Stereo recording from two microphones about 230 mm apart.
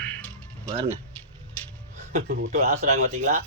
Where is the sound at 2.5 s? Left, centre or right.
Right.